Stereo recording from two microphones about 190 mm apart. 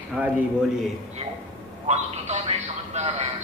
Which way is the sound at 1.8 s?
35° right (ahead or behind).